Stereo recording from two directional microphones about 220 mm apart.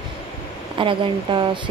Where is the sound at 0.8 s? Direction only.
20° right (ahead or behind).